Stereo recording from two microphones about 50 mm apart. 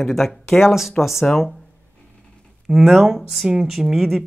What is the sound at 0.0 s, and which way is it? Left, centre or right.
Speech, centre.